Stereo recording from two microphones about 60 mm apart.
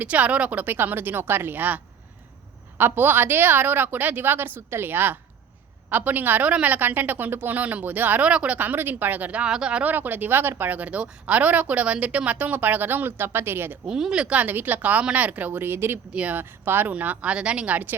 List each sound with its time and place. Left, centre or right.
0.0 s a woman's voice: right
8.5 s a woman's voice: right
9.5 s speech: centre
9.8 s a woman's voice: right
13.8 s speech: centre; by 15.7 s right
15.7 s speech: right
16.1 s speech: right
16.4 s a woman's voice: right
16.9 s speech: right